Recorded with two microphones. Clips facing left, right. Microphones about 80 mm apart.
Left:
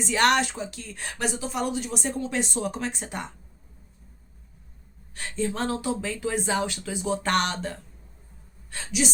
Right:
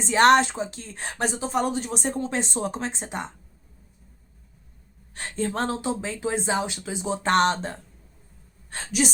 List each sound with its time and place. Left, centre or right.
0.0 s speech: right
5.1 s speech: right
5.7 s speech: right